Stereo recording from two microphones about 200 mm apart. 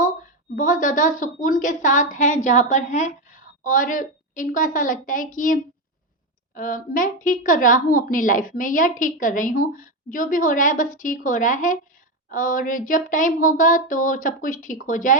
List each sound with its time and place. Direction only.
0.5 s a woman's voice: 40° left (ahead or behind)